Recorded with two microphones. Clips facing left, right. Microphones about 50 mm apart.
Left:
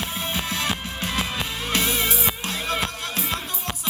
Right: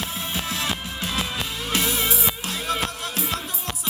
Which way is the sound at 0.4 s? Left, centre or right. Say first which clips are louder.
Left 1 dB; left.